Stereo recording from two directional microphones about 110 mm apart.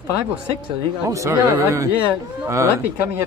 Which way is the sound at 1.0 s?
30° right (ahead or behind).